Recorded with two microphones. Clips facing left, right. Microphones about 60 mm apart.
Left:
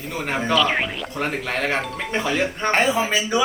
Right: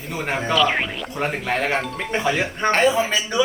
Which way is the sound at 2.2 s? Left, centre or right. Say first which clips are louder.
Right 2 dB; centre.